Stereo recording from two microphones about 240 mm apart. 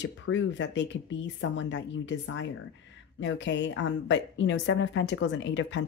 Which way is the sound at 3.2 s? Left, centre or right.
Left.